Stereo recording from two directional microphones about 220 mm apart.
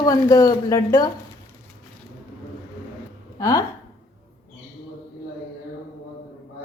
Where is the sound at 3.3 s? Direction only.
15° left (ahead or behind).